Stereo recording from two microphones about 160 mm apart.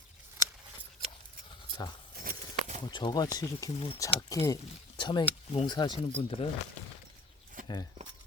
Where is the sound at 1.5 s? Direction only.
25° left (ahead or behind).